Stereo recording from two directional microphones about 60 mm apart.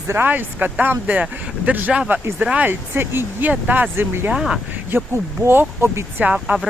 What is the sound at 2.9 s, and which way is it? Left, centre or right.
Speech, right.